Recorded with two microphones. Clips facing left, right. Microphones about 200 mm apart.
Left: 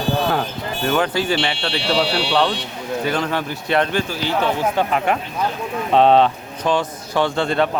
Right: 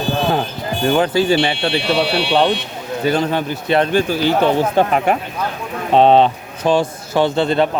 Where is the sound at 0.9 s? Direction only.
25° right (ahead or behind).